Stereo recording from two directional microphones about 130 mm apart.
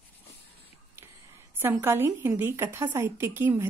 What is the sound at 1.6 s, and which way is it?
A woman's voice, 15° right (ahead or behind).